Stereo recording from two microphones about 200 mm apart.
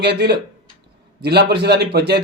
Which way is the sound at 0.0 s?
55° right (ahead or behind).